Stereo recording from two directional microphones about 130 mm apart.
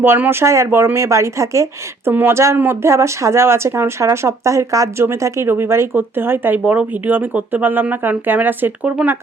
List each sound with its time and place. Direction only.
0.0 s speech: 15° right (ahead or behind)